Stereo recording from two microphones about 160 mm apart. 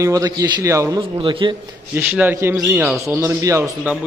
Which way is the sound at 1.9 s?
10° right (ahead or behind).